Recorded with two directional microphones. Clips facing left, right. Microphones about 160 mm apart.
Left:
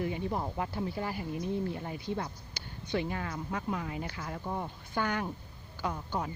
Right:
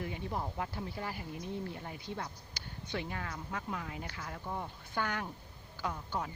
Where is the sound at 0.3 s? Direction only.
30° left (ahead or behind).